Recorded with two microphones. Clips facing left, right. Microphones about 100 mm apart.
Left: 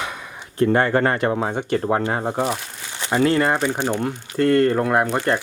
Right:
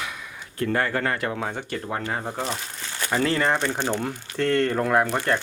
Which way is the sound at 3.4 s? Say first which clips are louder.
Left 3 dB; 10° left (ahead or behind).